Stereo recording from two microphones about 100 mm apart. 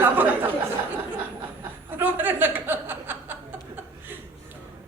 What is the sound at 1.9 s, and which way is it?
Speech, 20° right (ahead or behind).